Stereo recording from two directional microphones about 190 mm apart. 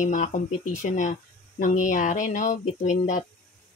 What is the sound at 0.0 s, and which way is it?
Speech, 40° left (ahead or behind).